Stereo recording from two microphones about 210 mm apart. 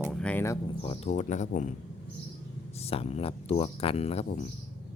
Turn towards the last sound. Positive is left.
turn(degrees=30)  # may be behind; listen again after turning